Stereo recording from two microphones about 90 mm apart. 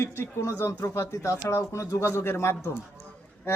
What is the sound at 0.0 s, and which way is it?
Speech, 25° left (ahead or behind).